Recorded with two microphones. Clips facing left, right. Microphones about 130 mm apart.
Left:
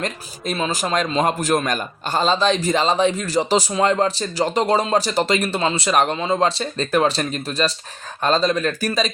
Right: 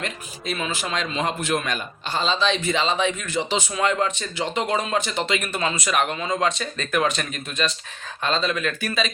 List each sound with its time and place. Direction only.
0.0 s a man's voice: 35° left (ahead or behind)